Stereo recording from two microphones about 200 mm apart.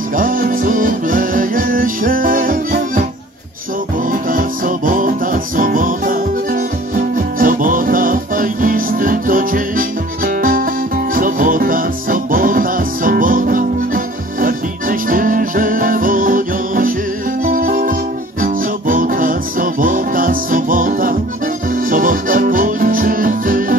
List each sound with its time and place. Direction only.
0.1 s music: 45° right (ahead or behind)
4.1 s music: 45° right (ahead or behind)